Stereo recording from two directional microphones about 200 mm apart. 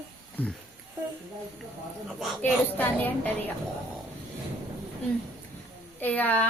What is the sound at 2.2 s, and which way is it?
Speech, 5° left (ahead or behind).